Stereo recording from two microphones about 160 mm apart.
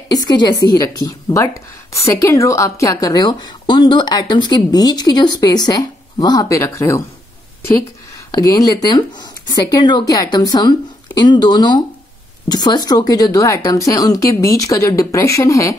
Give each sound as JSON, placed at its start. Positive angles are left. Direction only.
{"t": 0.1, "sound": "a woman's voice", "side_deg": 25}
{"t": 8.3, "sound": "a woman's voice", "side_deg": 25}